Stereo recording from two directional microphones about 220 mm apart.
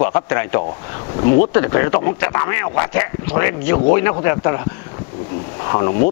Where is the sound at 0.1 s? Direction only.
15° left (ahead or behind).